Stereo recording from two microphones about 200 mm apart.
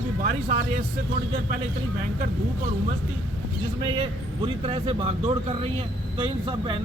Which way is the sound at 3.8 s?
25° right (ahead or behind).